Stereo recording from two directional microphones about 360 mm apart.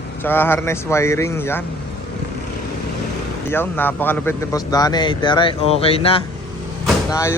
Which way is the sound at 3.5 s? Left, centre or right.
Centre.